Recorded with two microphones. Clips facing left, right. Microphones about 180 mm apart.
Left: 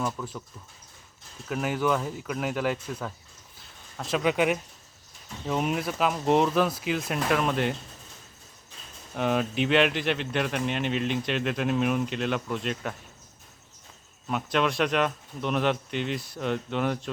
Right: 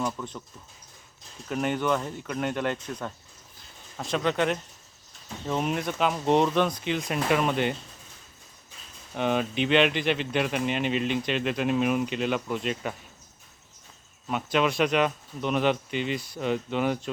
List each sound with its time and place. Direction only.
0.0 s speech: centre (ahead or behind)
1.5 s speech: 5° left (ahead or behind)
9.1 s speech: centre (ahead or behind)
14.3 s speech: centre (ahead or behind)